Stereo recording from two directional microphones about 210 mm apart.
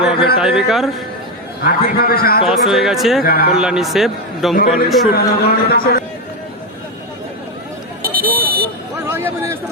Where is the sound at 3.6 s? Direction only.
5° right (ahead or behind).